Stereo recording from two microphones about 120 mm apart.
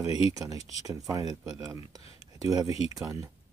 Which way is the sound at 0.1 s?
30° right (ahead or behind).